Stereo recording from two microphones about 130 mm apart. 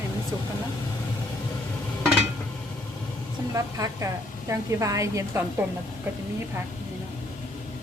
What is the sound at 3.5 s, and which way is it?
A woman's voice, 25° right (ahead or behind).